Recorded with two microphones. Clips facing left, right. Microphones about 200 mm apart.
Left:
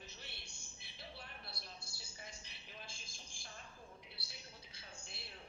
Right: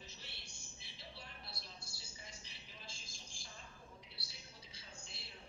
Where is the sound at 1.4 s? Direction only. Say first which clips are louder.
Left 1 dB; 55° left (ahead or behind).